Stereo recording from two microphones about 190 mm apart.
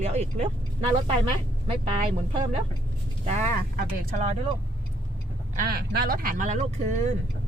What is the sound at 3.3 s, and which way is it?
Speech, 40° right (ahead or behind).